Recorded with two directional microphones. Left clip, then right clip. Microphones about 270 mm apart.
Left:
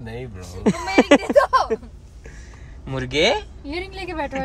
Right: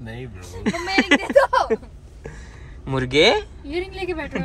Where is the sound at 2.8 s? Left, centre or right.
Centre.